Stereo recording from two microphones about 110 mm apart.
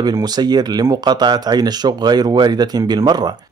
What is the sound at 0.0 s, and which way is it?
Speech, 40° right (ahead or behind).